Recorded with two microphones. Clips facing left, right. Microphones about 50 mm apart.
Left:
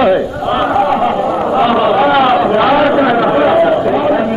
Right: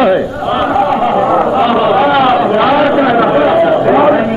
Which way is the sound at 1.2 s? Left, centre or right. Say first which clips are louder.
Right 4 dB; right.